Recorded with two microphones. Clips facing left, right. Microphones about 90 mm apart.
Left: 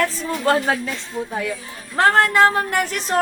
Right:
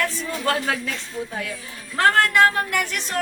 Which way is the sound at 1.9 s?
25° left (ahead or behind).